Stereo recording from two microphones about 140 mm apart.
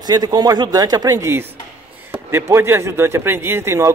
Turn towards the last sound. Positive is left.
turn(degrees=-20)  # may be behind; listen again after turning